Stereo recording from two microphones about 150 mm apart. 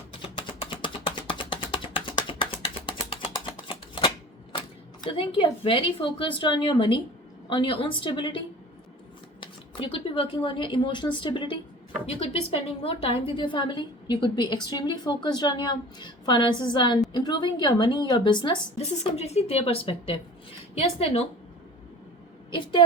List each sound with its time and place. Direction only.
0.6 s typing: 35° left (ahead or behind)
4.5 s a woman's voice: 30° left (ahead or behind)
9.4 s a woman's voice: 35° left (ahead or behind)
18.8 s a woman's voice: 45° left (ahead or behind)
22.5 s a woman's voice: 30° left (ahead or behind)